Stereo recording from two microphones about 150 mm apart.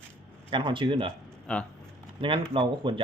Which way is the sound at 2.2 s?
35° right (ahead or behind).